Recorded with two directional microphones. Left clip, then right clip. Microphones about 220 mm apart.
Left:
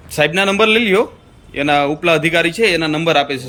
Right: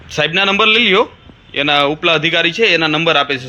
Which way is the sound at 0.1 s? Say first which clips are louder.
Right 1 dB; 10° left (ahead or behind).